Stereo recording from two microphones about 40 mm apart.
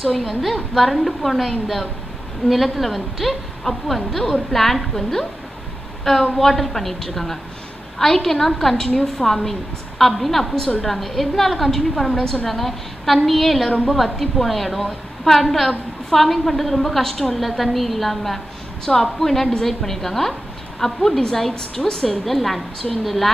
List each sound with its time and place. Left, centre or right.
0.0 s a woman's voice: centre
6.3 s a woman's voice: centre
22.2 s a woman's voice: centre